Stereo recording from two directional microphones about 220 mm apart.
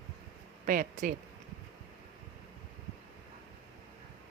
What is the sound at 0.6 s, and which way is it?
Speech, 40° right (ahead or behind).